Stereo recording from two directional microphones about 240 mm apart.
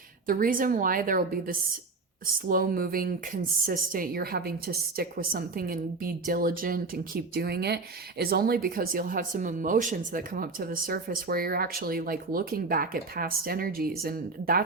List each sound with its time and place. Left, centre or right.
0.3 s speech: right